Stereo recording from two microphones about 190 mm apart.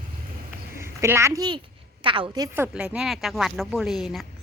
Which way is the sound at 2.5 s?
10° right (ahead or behind).